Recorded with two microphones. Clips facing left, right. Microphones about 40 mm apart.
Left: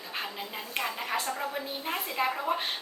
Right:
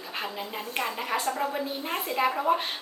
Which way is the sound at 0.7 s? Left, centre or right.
Centre.